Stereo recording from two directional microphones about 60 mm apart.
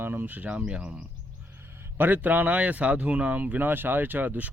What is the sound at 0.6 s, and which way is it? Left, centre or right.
Speech, centre.